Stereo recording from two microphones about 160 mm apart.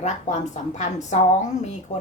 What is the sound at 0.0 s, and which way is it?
A woman's voice, 45° left (ahead or behind).